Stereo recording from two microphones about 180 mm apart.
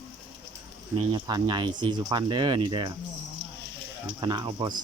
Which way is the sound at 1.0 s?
25° right (ahead or behind).